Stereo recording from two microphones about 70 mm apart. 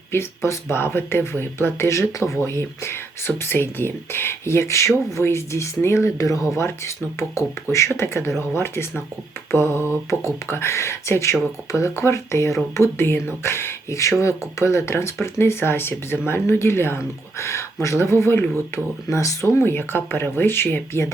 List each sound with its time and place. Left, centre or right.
0.1 s speech: left
7.7 s speech: left
19.1 s speech: left